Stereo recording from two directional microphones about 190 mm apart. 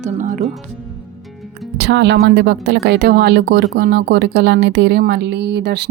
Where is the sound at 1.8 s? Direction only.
65° right (ahead or behind).